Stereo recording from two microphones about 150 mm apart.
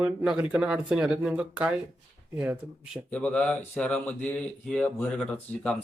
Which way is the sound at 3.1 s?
10° left (ahead or behind).